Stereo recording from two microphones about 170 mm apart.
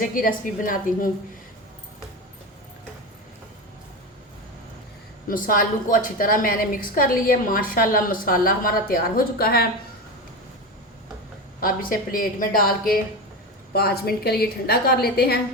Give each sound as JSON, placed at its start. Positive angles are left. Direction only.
{"t": 0.0, "sound": "a woman's voice", "side_deg": 55}
{"t": 5.3, "sound": "a woman's voice", "side_deg": 55}
{"t": 11.6, "sound": "a woman's voice", "side_deg": 55}